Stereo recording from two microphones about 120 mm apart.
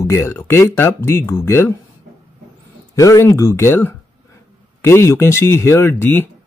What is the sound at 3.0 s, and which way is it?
Speech, 25° left (ahead or behind).